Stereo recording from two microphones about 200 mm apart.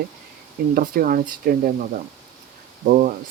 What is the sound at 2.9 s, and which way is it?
Speech, 45° right (ahead or behind).